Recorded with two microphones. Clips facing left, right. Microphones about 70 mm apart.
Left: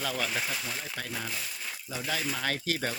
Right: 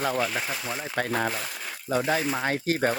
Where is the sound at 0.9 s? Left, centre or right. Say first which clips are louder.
Right 10 dB; right.